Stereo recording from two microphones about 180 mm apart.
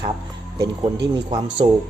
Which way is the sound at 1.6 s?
30° right (ahead or behind).